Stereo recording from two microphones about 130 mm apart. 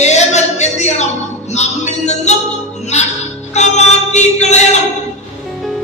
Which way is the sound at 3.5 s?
60° left (ahead or behind).